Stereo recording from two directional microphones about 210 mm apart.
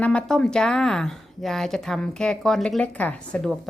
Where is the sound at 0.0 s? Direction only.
5° left (ahead or behind).